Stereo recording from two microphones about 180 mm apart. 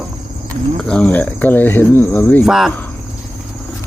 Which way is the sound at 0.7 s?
5° left (ahead or behind).